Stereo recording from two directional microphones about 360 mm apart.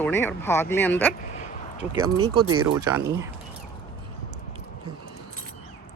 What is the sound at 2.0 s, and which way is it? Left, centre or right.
Speech, centre.